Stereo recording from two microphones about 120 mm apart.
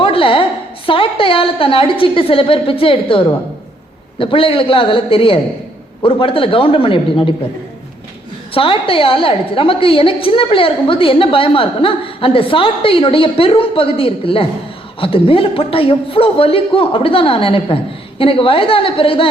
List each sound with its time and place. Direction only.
0.0 s a sound: 45° left (ahead or behind)
0.9 s a woman's voice: 45° left (ahead or behind)
8.5 s a woman's voice: 50° left (ahead or behind)